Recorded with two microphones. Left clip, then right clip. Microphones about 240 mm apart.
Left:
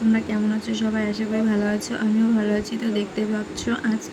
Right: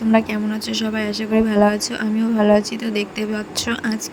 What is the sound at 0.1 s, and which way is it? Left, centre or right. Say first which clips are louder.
Speech: right 5 dB; right.